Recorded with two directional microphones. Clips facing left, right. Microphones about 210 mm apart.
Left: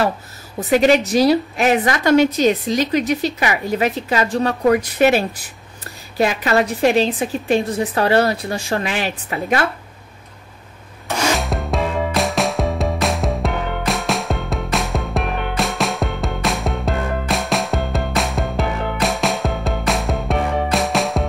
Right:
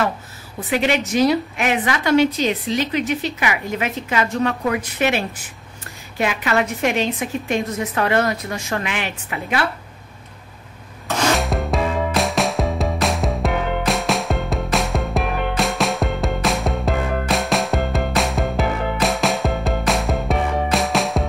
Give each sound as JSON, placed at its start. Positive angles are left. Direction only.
{"t": 0.6, "sound": "a woman's voice", "side_deg": 40}
{"t": 11.3, "sound": "music", "side_deg": 0}